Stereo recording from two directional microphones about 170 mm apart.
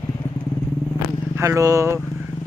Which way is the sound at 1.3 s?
15° right (ahead or behind).